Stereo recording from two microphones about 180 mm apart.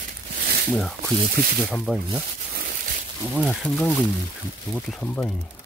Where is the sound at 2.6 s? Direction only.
50° right (ahead or behind).